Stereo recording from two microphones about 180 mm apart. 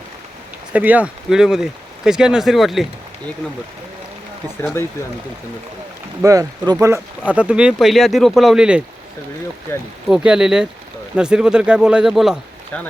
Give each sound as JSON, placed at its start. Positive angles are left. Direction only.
{"t": 0.7, "sound": "speech", "side_deg": -10}
{"t": 6.2, "sound": "speech", "side_deg": -20}
{"t": 9.7, "sound": "speech", "side_deg": 15}
{"t": 10.1, "sound": "speech", "side_deg": -5}
{"t": 12.7, "sound": "speech", "side_deg": 10}